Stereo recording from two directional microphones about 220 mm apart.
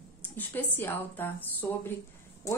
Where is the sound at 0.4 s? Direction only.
10° left (ahead or behind).